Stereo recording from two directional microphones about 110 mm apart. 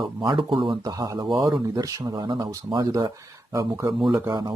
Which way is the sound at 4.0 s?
5° right (ahead or behind).